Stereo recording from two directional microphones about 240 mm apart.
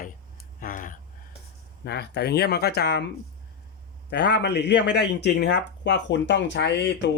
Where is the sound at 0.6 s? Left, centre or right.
Left.